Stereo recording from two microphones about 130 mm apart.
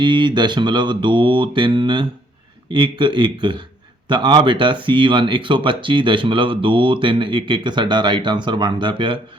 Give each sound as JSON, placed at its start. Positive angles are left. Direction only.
{"t": 0.0, "sound": "speech", "side_deg": -35}